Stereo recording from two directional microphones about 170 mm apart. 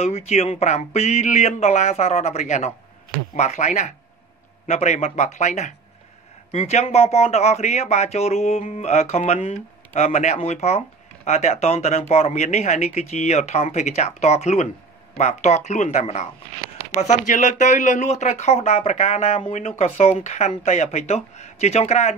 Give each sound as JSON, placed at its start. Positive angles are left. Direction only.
{"t": 0.0, "sound": "a man's voice", "side_deg": 40}